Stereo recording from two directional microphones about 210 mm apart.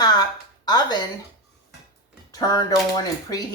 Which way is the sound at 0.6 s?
20° left (ahead or behind).